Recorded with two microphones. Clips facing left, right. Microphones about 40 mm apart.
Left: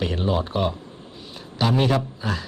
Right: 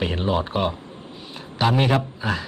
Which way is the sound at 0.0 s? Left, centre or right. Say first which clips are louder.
Right 1 dB; centre.